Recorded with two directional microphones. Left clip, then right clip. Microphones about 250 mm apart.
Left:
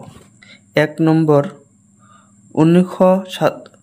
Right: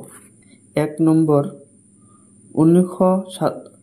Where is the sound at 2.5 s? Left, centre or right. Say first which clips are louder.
Left 1 dB; left.